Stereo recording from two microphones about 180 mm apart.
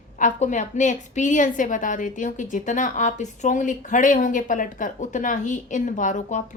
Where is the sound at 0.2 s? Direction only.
45° left (ahead or behind).